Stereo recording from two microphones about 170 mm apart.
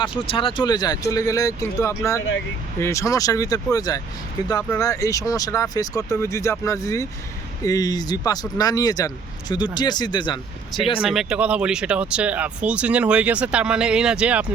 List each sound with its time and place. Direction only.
0.0 s speech: 30° left (ahead or behind)
11.0 s speech: centre (ahead or behind)